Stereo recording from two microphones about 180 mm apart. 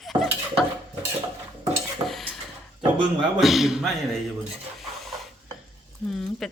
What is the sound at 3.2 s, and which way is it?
A woman's voice, centre (ahead or behind).